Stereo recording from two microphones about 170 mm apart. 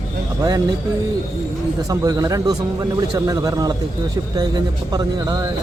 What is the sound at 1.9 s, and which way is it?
Speech, 20° right (ahead or behind).